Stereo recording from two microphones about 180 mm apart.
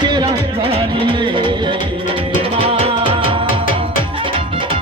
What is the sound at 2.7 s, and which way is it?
Music, 30° right (ahead or behind).